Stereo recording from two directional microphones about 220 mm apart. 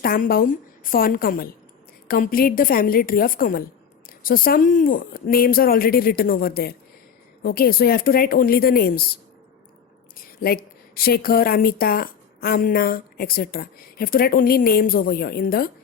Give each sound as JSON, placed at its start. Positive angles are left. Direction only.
{"t": 0.0, "sound": "a woman's voice", "side_deg": 40}
{"t": 10.2, "sound": "a woman's voice", "side_deg": 45}